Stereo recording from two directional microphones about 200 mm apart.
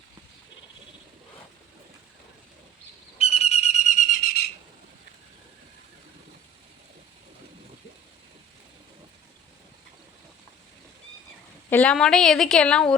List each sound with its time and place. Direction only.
3.2 s bird: 30° left (ahead or behind); by 4.4 s 45° left (ahead or behind)
11.7 s a woman's voice: 5° left (ahead or behind)